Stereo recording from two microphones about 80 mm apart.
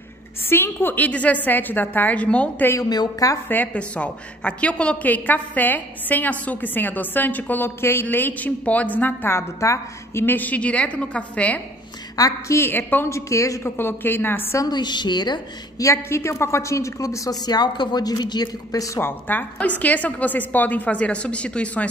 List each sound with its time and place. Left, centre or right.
0.5 s a woman's voice: left
2.9 s a woman's voice: left
3.4 s a woman's voice: left
10.2 s a woman's voice: left
12.2 s a woman's voice: left
12.5 s a woman's voice: left
13.1 s a woman's voice: left
14.7 s a woman's voice: left
15.8 s a woman's voice: left
18.9 s a woman's voice: left